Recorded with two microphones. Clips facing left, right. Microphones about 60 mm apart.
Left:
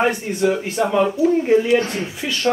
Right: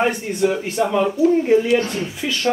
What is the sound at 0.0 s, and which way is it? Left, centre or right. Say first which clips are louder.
Speech: even; centre.